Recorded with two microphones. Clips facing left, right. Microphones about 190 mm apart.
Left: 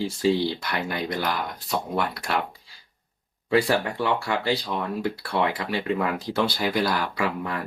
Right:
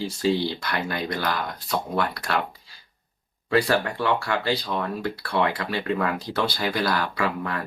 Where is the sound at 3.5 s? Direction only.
15° left (ahead or behind).